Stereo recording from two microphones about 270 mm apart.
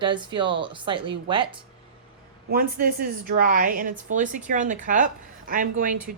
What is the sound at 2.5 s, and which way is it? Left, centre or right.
A woman's voice, right.